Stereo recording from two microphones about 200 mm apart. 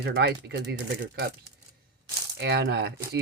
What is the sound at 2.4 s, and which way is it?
Speech, 55° right (ahead or behind).